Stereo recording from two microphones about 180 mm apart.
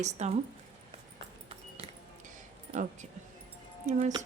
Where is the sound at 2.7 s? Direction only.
50° right (ahead or behind).